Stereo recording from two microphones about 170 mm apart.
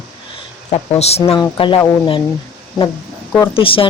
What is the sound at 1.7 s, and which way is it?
Speech, 25° left (ahead or behind).